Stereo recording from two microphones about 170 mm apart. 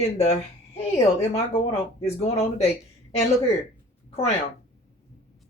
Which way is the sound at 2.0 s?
35° left (ahead or behind).